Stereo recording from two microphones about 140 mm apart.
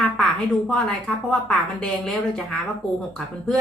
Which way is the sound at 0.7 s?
5° left (ahead or behind).